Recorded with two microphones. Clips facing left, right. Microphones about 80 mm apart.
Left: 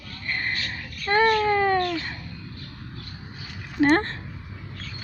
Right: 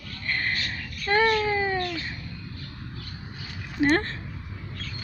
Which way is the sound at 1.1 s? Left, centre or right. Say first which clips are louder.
Left 2 dB; left.